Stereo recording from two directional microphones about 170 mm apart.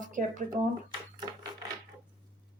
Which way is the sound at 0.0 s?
50° right (ahead or behind).